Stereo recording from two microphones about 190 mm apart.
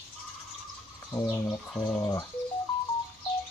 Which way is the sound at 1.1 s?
15° left (ahead or behind).